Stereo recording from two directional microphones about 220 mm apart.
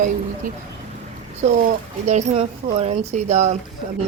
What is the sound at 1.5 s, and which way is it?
Speech, 35° right (ahead or behind).